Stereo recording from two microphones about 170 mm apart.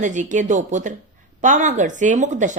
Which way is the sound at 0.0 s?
45° right (ahead or behind).